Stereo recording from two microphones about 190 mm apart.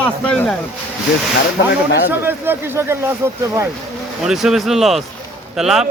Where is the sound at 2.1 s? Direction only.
10° right (ahead or behind).